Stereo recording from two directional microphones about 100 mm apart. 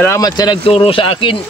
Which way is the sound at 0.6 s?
65° left (ahead or behind).